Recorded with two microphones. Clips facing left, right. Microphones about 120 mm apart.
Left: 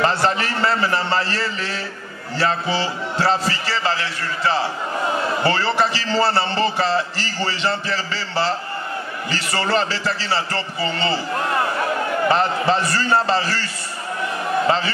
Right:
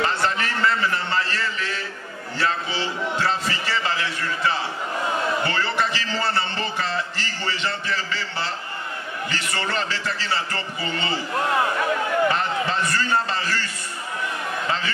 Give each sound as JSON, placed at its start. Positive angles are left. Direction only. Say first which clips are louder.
{"t": 0.0, "sound": "a man's voice", "louder": "left 4 dB", "side_deg": 35}
{"t": 12.3, "sound": "a man's voice", "louder": "left 5 dB", "side_deg": 30}